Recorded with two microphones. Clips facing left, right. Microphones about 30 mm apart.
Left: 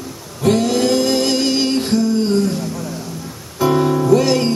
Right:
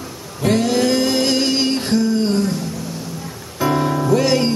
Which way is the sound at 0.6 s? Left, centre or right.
Centre.